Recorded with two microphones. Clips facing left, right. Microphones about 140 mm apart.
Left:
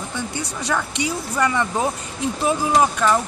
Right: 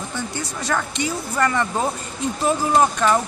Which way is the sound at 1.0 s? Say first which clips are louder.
Even; 10° left (ahead or behind).